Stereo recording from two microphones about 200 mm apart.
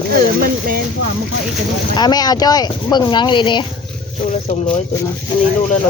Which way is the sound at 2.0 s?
20° left (ahead or behind).